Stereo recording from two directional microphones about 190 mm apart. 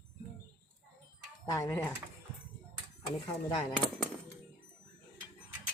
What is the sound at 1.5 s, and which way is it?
Speech, 15° left (ahead or behind).